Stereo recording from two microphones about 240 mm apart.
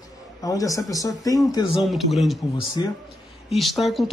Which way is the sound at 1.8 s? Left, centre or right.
Centre.